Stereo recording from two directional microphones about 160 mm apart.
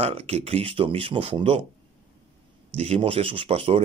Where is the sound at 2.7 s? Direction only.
40° right (ahead or behind).